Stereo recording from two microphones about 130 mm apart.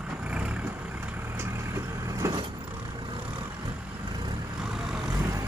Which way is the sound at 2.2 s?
25° right (ahead or behind).